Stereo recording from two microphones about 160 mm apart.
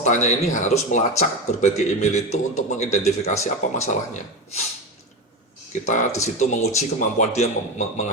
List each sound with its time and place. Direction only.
0.0 s speech: 45° left (ahead or behind)
5.8 s speech: 50° left (ahead or behind)